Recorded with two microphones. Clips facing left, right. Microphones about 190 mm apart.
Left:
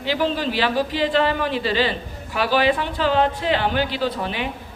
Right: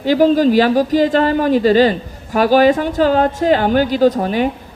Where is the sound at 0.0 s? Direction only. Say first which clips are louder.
Right 11 dB; 45° right (ahead or behind).